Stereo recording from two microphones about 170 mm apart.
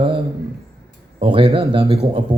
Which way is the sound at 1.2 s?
30° right (ahead or behind).